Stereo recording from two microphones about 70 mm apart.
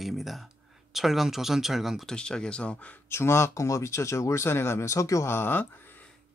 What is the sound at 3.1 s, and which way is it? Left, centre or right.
Speech, left.